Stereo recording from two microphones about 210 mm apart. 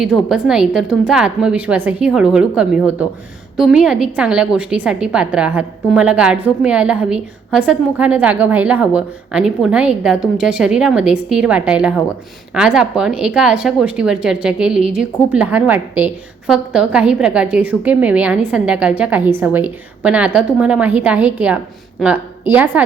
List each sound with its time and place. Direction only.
0.0 s a woman's voice: centre (ahead or behind)